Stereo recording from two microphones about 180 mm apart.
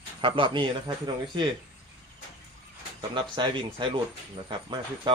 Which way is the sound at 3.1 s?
25° right (ahead or behind).